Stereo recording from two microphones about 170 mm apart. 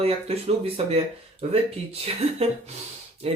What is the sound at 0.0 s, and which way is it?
Speech, 35° right (ahead or behind).